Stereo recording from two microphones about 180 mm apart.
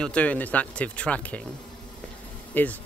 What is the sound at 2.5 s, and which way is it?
Speech, 10° left (ahead or behind).